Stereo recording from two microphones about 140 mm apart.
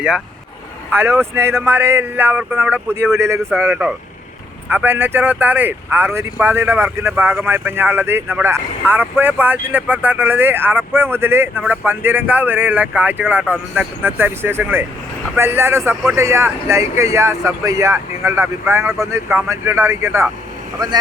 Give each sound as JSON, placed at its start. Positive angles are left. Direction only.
{"t": 0.9, "sound": "speech", "side_deg": -15}
{"t": 3.6, "sound": "speech", "side_deg": -10}
{"t": 20.7, "sound": "speech", "side_deg": -30}